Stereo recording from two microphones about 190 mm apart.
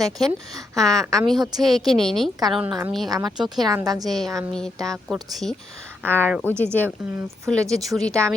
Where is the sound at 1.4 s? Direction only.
20° right (ahead or behind).